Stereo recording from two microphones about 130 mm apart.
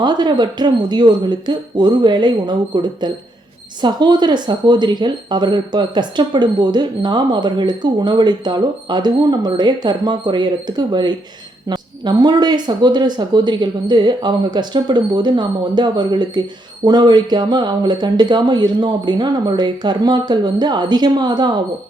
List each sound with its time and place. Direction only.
0.0 s speech: 35° right (ahead or behind)